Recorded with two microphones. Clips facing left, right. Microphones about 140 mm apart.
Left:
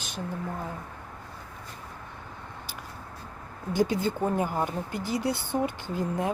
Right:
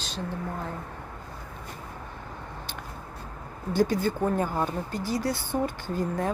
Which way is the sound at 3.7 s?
20° left (ahead or behind).